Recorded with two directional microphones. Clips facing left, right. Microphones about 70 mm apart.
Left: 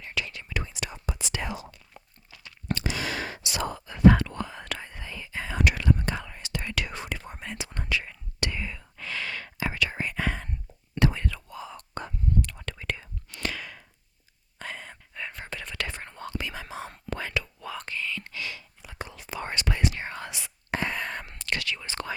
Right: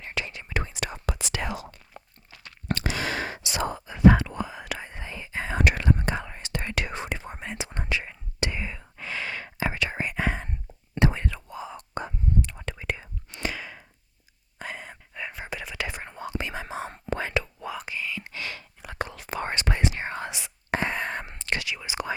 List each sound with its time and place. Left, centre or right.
0.0 s whispering: right
0.5 s whispering: right
1.0 s whispering: right
2.0 s a sound: right
2.3 s whispering: right; by 4.9 s centre
4.9 s whispering: right
17.7 s whispering: centre
18.3 s a sound: right
18.5 s whispering: right
19.5 s whispering: right; by 22.1 s centre